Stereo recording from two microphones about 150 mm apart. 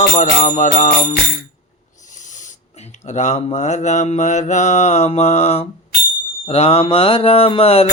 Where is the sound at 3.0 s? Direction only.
50° left (ahead or behind).